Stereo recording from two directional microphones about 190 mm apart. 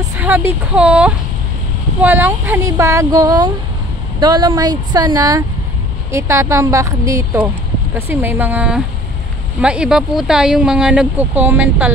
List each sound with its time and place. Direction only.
0.2 s speech: 10° right (ahead or behind)